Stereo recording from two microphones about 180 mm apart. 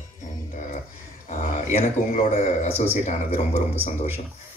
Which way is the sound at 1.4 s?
40° left (ahead or behind).